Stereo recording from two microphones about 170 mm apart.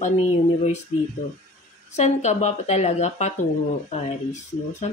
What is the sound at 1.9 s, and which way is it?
Speech, 45° left (ahead or behind).